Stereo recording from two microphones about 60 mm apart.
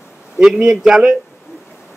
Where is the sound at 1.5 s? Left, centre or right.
Left.